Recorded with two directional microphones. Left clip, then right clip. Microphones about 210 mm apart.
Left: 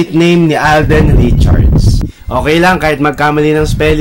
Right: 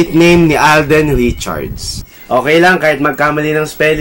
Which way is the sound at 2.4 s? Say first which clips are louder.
Even; 40° left (ahead or behind).